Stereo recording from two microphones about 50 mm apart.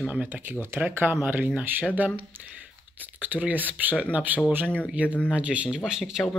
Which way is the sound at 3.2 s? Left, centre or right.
Right.